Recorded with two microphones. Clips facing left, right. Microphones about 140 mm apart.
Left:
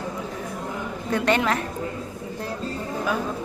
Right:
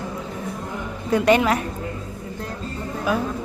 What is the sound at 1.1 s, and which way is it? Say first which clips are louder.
Speech: right 5 dB; 10° right (ahead or behind).